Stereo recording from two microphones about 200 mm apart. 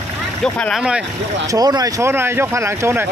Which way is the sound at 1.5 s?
20° right (ahead or behind).